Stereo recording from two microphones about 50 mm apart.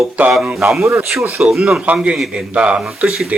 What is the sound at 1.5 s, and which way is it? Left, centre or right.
Speech, centre.